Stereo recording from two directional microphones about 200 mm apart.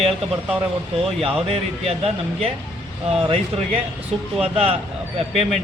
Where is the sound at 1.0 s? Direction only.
30° right (ahead or behind).